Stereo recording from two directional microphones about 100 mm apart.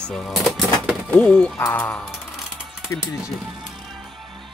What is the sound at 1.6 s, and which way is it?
Speech, 20° left (ahead or behind).